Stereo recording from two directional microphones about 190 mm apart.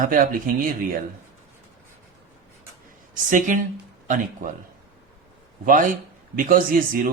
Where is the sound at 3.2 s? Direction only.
45° right (ahead or behind).